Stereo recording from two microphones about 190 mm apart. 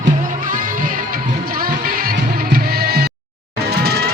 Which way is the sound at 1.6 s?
50° right (ahead or behind).